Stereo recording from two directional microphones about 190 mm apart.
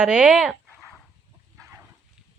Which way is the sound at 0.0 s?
5° right (ahead or behind).